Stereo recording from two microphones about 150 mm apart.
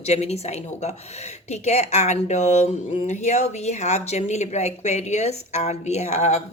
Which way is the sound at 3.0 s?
50° left (ahead or behind).